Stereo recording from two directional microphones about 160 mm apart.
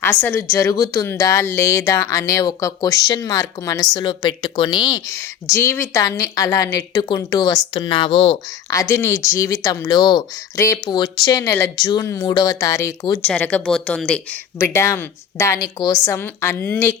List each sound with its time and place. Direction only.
0.0 s a woman's voice: 15° left (ahead or behind)
5.5 s a woman's voice: 15° left (ahead or behind); by 8.4 s 35° left (ahead or behind)
8.7 s a woman's voice: 20° left (ahead or behind)
13.2 s speech: 5° left (ahead or behind)
14.6 s a woman's voice: 15° left (ahead or behind)